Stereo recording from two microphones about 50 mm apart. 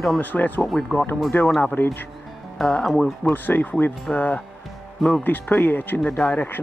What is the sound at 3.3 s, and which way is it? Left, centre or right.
Speech, left.